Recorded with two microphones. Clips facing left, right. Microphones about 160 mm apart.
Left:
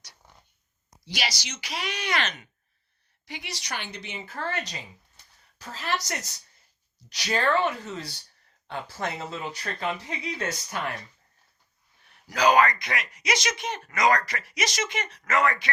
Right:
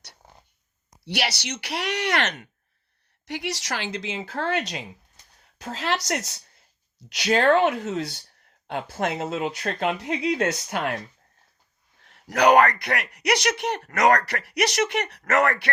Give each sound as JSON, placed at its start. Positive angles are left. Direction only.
{"t": 1.0, "sound": "a woman's voice", "side_deg": -70}
{"t": 5.6, "sound": "speech", "side_deg": -80}
{"t": 12.3, "sound": "speech", "side_deg": -70}